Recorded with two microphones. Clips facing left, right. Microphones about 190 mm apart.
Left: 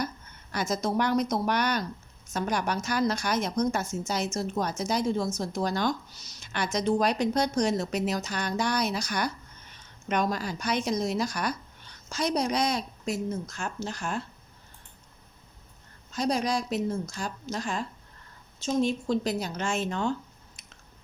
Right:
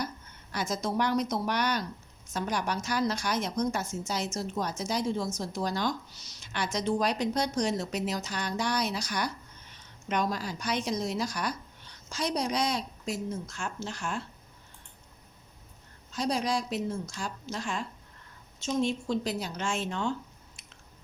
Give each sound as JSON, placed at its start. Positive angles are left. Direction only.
{"t": 0.5, "sound": "a woman's voice", "side_deg": 45}
{"t": 16.1, "sound": "a woman's voice", "side_deg": 45}